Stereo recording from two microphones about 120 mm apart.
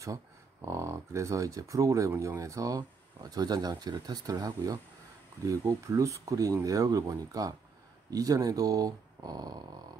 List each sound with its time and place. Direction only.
0.7 s speech: 25° right (ahead or behind)